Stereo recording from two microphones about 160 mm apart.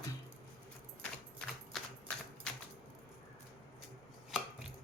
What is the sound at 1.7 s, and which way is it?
Horse, 5° left (ahead or behind).